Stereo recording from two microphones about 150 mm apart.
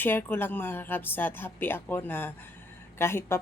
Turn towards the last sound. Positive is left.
turn(degrees=15)  # may be behind; listen again after turning